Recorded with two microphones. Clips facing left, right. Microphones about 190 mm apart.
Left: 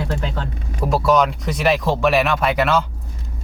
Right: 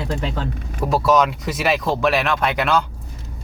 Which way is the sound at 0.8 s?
Centre (ahead or behind).